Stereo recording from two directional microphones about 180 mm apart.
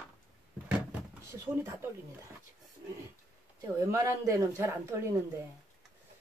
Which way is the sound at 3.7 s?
15° right (ahead or behind).